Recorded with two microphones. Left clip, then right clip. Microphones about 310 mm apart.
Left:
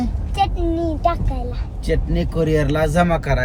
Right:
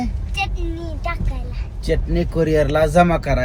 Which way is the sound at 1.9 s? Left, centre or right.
Centre.